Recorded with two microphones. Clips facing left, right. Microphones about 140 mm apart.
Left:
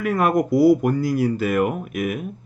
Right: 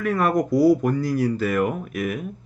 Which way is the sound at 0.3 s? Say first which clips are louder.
Left 2 dB; 10° left (ahead or behind).